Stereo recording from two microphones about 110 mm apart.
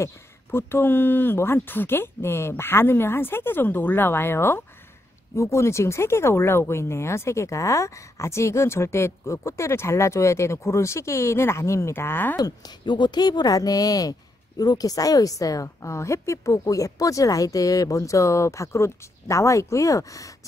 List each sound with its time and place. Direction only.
0.0 s a woman's voice: 20° left (ahead or behind)
12.4 s a woman's voice: 35° left (ahead or behind)